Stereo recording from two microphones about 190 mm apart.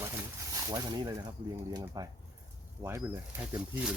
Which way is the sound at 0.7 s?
20° right (ahead or behind).